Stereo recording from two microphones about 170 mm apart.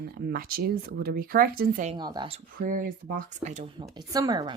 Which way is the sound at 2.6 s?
55° right (ahead or behind).